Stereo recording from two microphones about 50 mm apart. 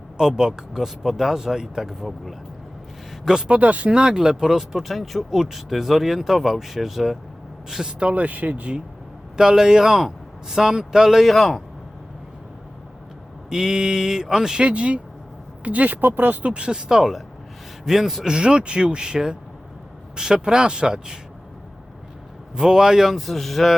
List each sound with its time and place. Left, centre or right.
0.2 s speech: centre
3.2 s speech: centre
3.6 s speech: right; by 7.9 s centre
7.9 s speech: right
9.4 s speech: centre
11.3 s speech: centre
13.5 s speech: centre
14.7 s speech: right
22.5 s speech: centre
23.1 s speech: centre